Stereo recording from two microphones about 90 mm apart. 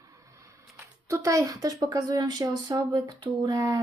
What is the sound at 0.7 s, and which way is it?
Speech, 35° right (ahead or behind).